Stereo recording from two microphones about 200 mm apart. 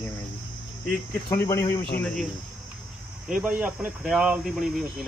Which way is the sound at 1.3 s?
15° left (ahead or behind).